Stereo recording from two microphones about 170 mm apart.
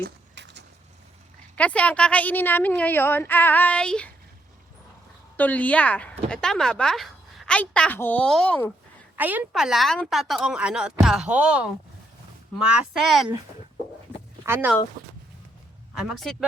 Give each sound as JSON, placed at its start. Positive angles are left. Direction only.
{"t": 0.0, "sound": "a sound", "side_deg": -90}
{"t": 1.5, "sound": "speech", "side_deg": 10}
{"t": 5.4, "sound": "speech", "side_deg": 10}
{"t": 9.1, "sound": "a woman's voice", "side_deg": -10}
{"t": 14.4, "sound": "speech", "side_deg": -15}
{"t": 16.0, "sound": "a woman's voice", "side_deg": 0}